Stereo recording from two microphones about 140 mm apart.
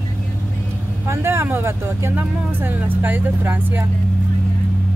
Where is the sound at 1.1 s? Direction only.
15° right (ahead or behind).